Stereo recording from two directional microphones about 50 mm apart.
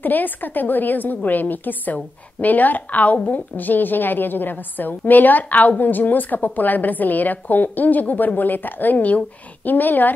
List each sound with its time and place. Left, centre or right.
0.0 s a woman's voice: left